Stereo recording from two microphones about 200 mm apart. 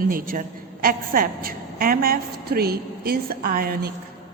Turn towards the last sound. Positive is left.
turn(degrees=-45)  # may be behind; listen again after turning